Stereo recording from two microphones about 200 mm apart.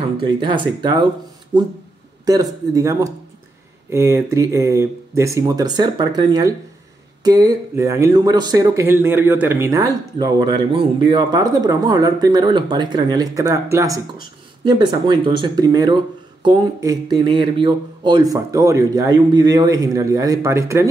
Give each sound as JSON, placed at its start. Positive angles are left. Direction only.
{"t": 0.2, "sound": "speech", "side_deg": -25}